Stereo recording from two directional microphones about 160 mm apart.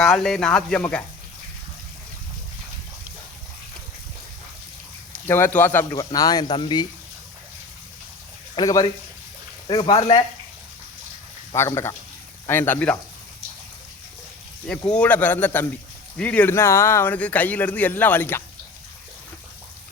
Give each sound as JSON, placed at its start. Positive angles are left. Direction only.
{"t": 0.0, "sound": "speech", "side_deg": 5}
{"t": 5.1, "sound": "speech", "side_deg": 10}
{"t": 8.5, "sound": "speech", "side_deg": 25}
{"t": 11.5, "sound": "speech", "side_deg": 15}
{"t": 14.7, "sound": "speech", "side_deg": 5}